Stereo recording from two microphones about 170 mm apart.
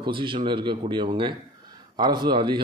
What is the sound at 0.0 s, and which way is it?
Speech, 30° right (ahead or behind).